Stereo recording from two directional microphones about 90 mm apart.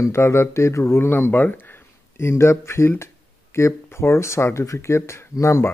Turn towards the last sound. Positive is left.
turn(degrees=30)  # may be behind; listen again after turning